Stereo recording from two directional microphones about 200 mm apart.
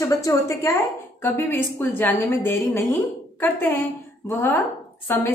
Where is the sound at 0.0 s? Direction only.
15° left (ahead or behind).